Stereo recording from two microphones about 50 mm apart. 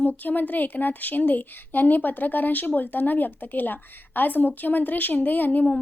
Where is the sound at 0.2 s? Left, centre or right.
Left.